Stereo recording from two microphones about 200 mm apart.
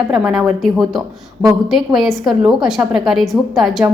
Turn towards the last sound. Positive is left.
turn(degrees=0)  # may be behind; listen again after turning